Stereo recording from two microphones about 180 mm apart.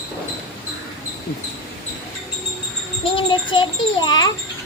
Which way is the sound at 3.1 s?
25° left (ahead or behind).